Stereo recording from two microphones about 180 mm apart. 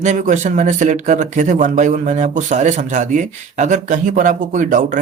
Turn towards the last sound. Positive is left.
turn(degrees=-45)  # may be behind; listen again after turning